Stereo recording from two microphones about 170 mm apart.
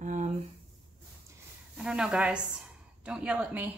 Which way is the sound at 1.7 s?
5° right (ahead or behind).